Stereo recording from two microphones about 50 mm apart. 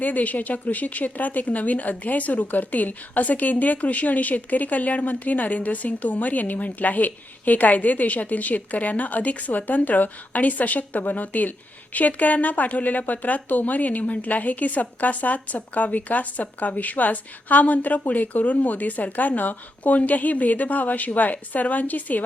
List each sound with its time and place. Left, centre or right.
0.0 s speech: left